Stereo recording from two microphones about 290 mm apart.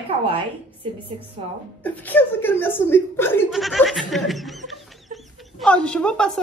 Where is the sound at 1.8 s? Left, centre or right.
Centre.